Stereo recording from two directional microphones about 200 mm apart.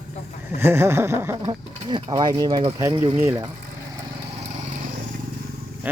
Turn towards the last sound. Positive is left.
turn(degrees=-10)  # may be behind; listen again after turning